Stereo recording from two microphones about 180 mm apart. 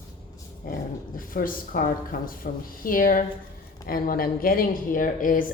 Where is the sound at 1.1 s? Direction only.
50° left (ahead or behind).